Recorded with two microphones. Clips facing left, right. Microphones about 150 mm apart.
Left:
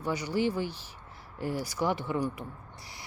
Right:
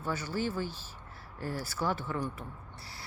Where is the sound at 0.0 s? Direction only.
15° left (ahead or behind).